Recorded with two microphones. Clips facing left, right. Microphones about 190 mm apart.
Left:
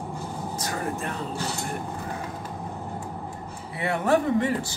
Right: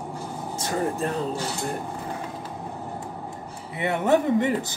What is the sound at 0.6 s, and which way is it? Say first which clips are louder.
Speech: right 6 dB; 30° right (ahead or behind).